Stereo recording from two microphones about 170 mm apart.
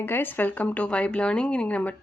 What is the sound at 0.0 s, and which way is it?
Speech, 10° left (ahead or behind).